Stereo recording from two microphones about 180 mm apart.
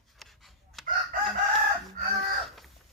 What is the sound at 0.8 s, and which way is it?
Chicken, centre (ahead or behind).